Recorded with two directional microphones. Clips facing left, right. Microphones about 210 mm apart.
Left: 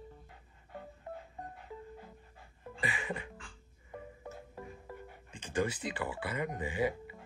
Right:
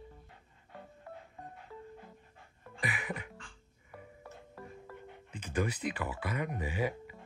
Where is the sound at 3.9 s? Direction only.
20° left (ahead or behind).